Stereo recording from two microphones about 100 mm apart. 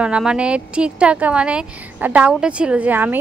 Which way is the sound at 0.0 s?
10° right (ahead or behind).